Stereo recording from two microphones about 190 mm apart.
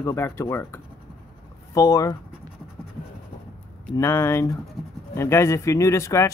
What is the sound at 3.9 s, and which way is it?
Speech, 15° left (ahead or behind).